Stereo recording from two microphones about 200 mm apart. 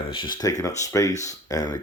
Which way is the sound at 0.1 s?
25° left (ahead or behind).